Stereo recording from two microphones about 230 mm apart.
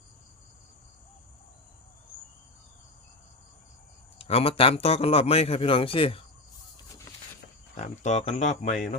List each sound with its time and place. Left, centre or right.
4.2 s a man's voice: left
7.8 s a man's voice: left